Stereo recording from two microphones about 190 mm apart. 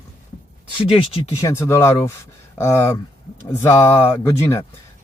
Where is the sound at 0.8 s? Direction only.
20° left (ahead or behind).